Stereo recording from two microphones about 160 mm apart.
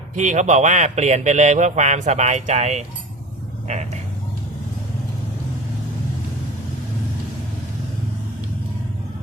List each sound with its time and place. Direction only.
0.2 s speech: 50° right (ahead or behind)